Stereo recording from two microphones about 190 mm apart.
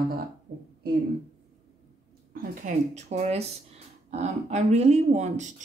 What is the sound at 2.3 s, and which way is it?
Speech, 40° right (ahead or behind).